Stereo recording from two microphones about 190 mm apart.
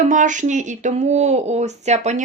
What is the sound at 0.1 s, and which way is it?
Speech, 40° right (ahead or behind).